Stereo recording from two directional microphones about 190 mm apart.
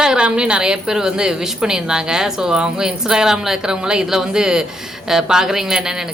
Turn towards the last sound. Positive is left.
turn(degrees=-5)  # may be behind; listen again after turning